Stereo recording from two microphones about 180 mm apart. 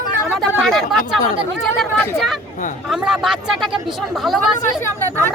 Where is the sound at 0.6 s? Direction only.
Centre (ahead or behind).